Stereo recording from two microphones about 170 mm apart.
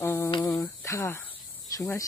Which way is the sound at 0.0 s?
15° left (ahead or behind).